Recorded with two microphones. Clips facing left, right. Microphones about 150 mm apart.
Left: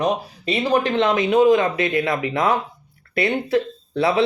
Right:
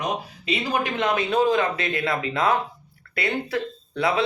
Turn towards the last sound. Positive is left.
turn(degrees=30)  # may be behind; listen again after turning